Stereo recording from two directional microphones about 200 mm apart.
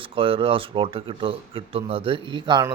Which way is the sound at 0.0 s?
25° right (ahead or behind).